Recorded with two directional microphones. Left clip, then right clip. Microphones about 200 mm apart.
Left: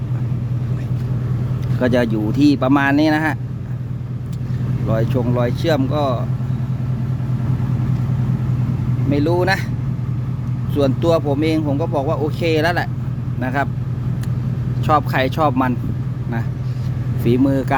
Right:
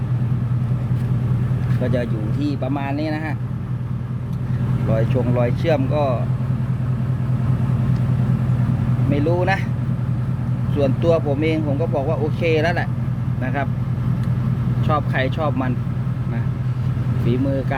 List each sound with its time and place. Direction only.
1.8 s speech: 45° left (ahead or behind)
4.9 s speech: 25° left (ahead or behind)
9.0 s speech: 30° left (ahead or behind)
10.8 s speech: 30° left (ahead or behind)
14.8 s speech: 35° left (ahead or behind)
17.2 s speech: 35° left (ahead or behind)